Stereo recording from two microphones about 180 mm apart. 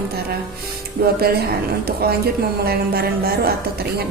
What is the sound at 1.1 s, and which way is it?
A woman's voice, 60° right (ahead or behind).